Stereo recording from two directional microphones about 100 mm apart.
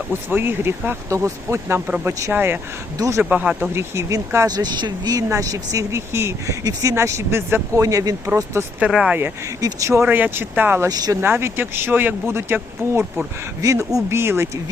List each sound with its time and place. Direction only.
0.1 s speech: 20° right (ahead or behind)
3.2 s speech: 15° right (ahead or behind)
3.6 s speech: 25° right (ahead or behind)
8.8 s speech: 10° right (ahead or behind)
9.6 s speech: 35° right (ahead or behind)
10.1 s speech: 20° right (ahead or behind)
10.8 s speech: 40° right (ahead or behind)
11.2 s speech: 25° right (ahead or behind)
13.6 s speech: 35° right (ahead or behind)